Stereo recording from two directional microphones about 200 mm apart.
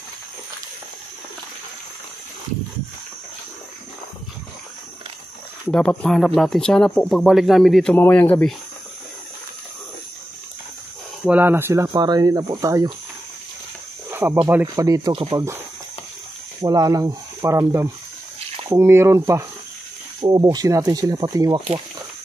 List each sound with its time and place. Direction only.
5.7 s speech: 5° left (ahead or behind)
11.2 s speech: 10° right (ahead or behind)
14.1 s speech: 10° right (ahead or behind)
16.6 s speech: 20° right (ahead or behind)